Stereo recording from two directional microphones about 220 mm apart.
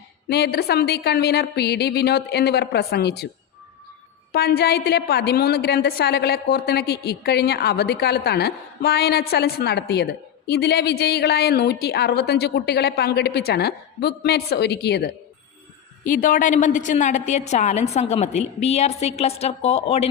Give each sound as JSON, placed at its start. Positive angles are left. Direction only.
{"t": 0.3, "sound": "a woman's voice", "side_deg": 45}
{"t": 4.3, "sound": "a woman's voice", "side_deg": 45}
{"t": 16.0, "sound": "a woman's voice", "side_deg": 40}